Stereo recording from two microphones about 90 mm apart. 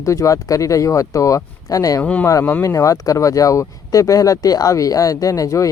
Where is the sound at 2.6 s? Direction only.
35° left (ahead or behind).